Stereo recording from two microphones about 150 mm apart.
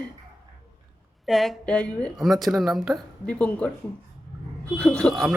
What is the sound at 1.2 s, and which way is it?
Speech, centre (ahead or behind).